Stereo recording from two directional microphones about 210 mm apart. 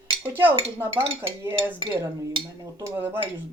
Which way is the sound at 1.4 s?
10° right (ahead or behind).